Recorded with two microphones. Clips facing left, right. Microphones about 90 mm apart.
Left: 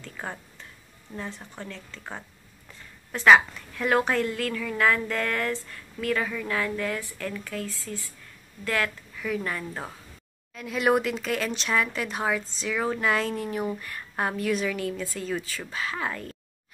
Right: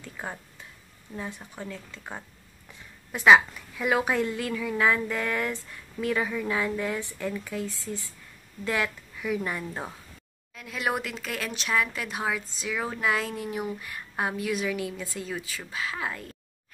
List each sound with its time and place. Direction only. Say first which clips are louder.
0.0 s a woman's voice: left 1 dB; 5° right (ahead or behind)
10.5 s a woman's voice: left 6 dB; centre (ahead or behind)